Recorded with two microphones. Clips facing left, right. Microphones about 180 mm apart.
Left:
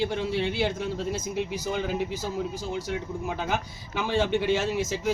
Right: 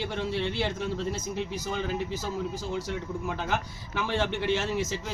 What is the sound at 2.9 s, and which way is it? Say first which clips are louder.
Speech: left 2 dB; 10° left (ahead or behind).